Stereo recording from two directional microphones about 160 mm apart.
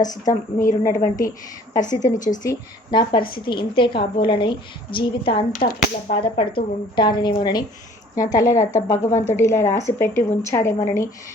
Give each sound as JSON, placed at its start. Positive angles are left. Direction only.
{"t": 0.0, "sound": "a woman's voice", "side_deg": 25}
{"t": 1.8, "sound": "a woman's voice", "side_deg": 50}
{"t": 2.4, "sound": "a woman's voice", "side_deg": 25}
{"t": 5.5, "sound": "a sound", "side_deg": 60}
{"t": 6.1, "sound": "a woman's voice", "side_deg": 30}